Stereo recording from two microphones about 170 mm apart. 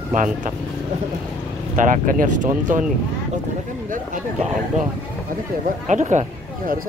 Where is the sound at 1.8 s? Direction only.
50° right (ahead or behind).